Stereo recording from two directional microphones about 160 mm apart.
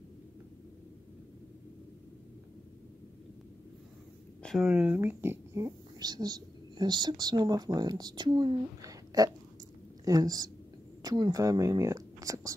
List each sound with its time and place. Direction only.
4.4 s a woman's voice: centre (ahead or behind); by 12.5 s 20° right (ahead or behind)